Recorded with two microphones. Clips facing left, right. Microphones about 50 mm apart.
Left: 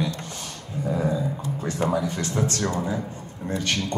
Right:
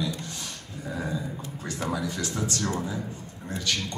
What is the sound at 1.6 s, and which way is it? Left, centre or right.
A man's voice, left.